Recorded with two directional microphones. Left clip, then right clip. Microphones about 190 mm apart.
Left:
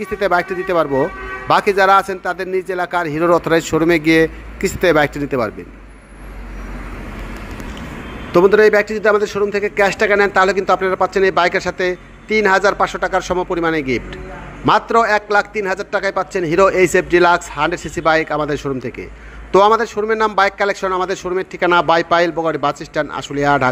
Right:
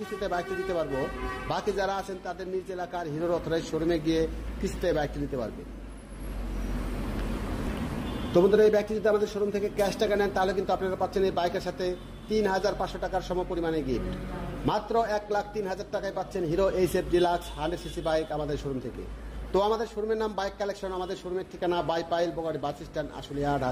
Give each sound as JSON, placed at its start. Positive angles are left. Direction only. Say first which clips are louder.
{"t": 0.2, "sound": "a man's voice", "louder": "left 15 dB", "side_deg": 20}
{"t": 8.3, "sound": "a man's voice", "louder": "left 11 dB", "side_deg": 20}